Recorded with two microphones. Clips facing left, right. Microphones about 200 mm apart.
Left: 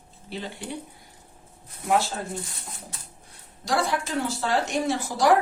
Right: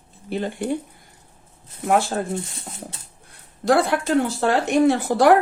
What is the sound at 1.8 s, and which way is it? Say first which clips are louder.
Speech: right 4 dB; 55° right (ahead or behind).